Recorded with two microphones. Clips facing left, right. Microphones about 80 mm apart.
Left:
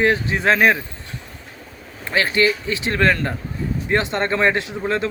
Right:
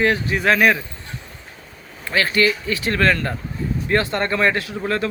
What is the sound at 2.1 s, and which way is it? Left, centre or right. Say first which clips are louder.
Speech: even; left.